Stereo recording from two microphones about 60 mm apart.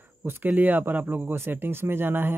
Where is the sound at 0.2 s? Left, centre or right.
Right.